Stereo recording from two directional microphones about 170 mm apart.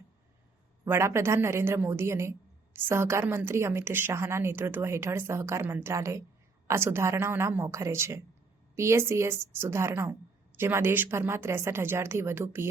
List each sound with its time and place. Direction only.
0.9 s a woman's voice: 15° right (ahead or behind)